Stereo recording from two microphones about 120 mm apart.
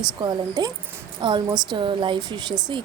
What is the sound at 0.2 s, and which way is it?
Speech, 35° right (ahead or behind).